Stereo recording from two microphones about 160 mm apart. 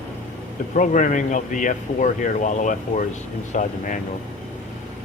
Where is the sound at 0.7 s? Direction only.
55° left (ahead or behind).